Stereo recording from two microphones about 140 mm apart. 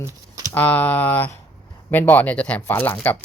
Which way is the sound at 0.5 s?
10° left (ahead or behind).